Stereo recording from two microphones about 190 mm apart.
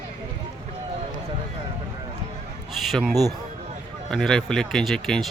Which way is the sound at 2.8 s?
Centre (ahead or behind).